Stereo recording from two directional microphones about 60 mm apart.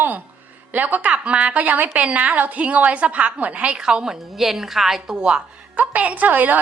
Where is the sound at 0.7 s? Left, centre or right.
Right; by 5.4 s centre.